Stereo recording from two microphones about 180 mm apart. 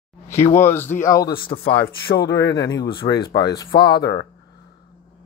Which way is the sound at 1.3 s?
60° left (ahead or behind).